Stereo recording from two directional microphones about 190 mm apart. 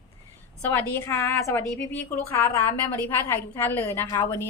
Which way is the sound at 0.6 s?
10° left (ahead or behind).